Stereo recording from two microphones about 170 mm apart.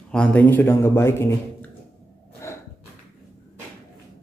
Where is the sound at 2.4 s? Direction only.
15° left (ahead or behind).